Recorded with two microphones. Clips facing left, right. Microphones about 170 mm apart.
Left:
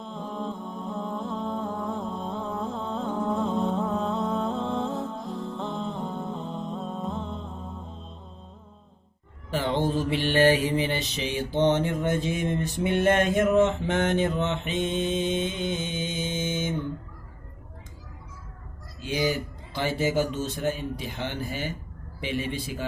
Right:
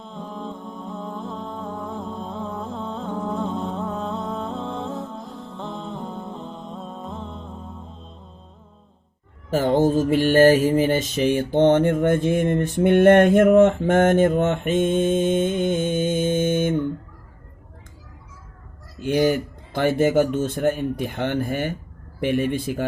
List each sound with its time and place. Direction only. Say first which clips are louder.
0.0 s mantra: even; centre (ahead or behind)
9.5 s mantra: right 7 dB; 45° right (ahead or behind)
18.9 s mantra: right 7 dB; 55° right (ahead or behind)